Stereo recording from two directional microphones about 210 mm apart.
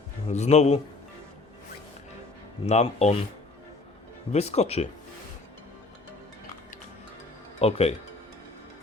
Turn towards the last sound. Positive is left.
turn(degrees=30)  # may be behind; listen again after turning